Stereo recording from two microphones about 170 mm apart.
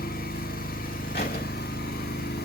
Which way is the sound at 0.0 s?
60° left (ahead or behind).